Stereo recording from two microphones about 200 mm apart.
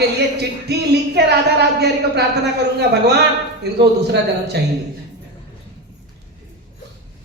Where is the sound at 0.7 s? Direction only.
55° right (ahead or behind).